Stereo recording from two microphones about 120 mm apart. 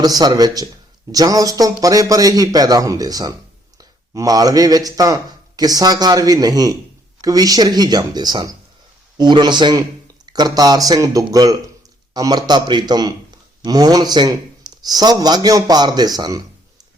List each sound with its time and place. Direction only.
0.0 s a man's voice: 35° right (ahead or behind)